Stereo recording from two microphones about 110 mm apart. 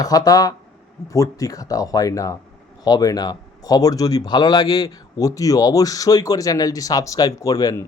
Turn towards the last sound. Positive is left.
turn(degrees=30)  # may be behind; listen again after turning